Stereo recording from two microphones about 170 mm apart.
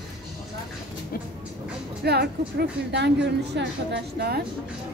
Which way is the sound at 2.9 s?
85° right.